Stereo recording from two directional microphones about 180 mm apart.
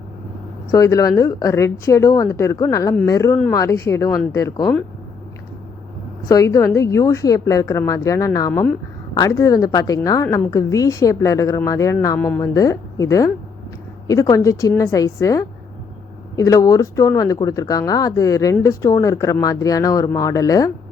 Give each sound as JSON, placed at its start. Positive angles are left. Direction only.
{"t": 0.7, "sound": "a woman's voice", "side_deg": 20}
{"t": 6.2, "sound": "a woman's voice", "side_deg": 20}